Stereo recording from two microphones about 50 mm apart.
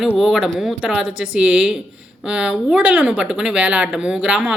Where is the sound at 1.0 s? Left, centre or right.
Right.